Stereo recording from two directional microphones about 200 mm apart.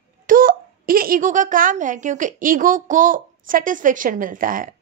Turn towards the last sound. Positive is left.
turn(degrees=-45)  # may be behind; listen again after turning